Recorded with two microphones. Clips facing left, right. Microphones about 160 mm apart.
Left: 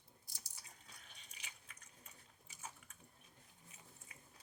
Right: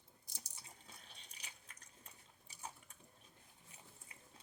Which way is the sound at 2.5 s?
35° right (ahead or behind).